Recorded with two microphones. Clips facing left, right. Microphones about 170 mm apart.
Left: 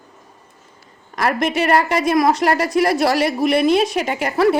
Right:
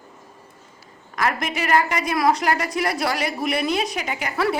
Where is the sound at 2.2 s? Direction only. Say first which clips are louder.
Left 4 dB; 25° left (ahead or behind).